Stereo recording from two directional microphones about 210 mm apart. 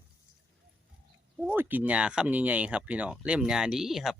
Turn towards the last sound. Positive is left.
turn(degrees=0)  # may be behind; listen again after turning